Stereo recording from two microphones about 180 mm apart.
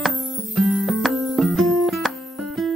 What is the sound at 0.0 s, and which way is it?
Music, centre (ahead or behind).